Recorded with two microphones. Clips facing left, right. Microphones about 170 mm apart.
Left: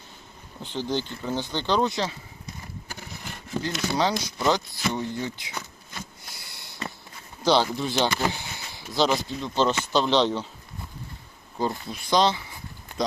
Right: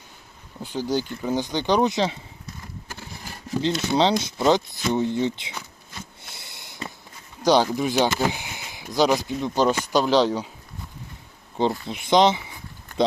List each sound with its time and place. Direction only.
0.6 s speech: 10° right (ahead or behind)
3.6 s speech: 25° right (ahead or behind)
6.2 s a sound: 25° right (ahead or behind)
7.4 s speech: 10° right (ahead or behind)
11.5 s speech: 20° right (ahead or behind)